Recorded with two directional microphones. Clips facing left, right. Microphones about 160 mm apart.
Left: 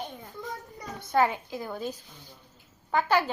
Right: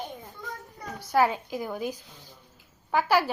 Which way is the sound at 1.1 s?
10° right (ahead or behind).